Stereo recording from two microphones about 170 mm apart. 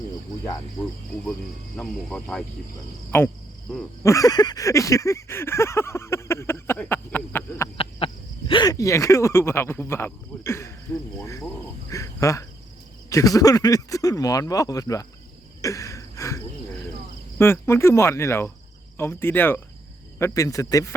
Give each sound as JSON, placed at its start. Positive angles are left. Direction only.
{"t": 1.2, "sound": "speech", "side_deg": 5}
{"t": 3.7, "sound": "speech", "side_deg": 0}
{"t": 4.0, "sound": "a sound", "side_deg": 20}
{"t": 7.8, "sound": "speech", "side_deg": 30}
{"t": 11.9, "sound": "cricket", "side_deg": 20}
{"t": 13.1, "sound": "speech", "side_deg": 20}
{"t": 15.6, "sound": "a sound", "side_deg": 20}
{"t": 17.3, "sound": "speech", "side_deg": 15}